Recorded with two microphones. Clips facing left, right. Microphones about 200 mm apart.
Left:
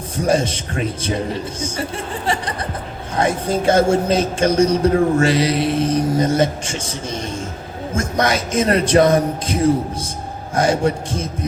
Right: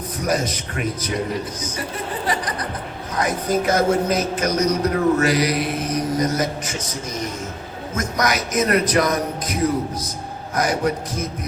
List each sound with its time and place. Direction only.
0.2 s a man's voice: 30° left (ahead or behind)